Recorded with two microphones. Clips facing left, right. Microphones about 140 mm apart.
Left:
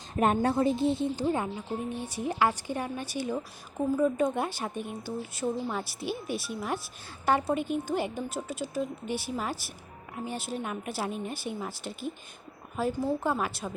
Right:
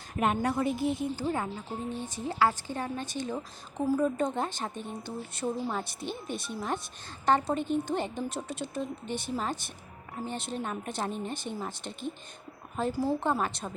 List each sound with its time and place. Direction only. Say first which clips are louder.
0.2 s a woman's voice: left 3 dB; 35° left (ahead or behind); by 13.7 s centre (ahead or behind)